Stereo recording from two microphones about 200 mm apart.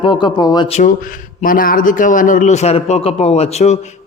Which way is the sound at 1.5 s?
45° left (ahead or behind).